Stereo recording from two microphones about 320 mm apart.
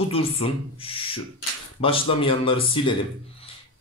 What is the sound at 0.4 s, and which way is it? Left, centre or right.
Speech, centre.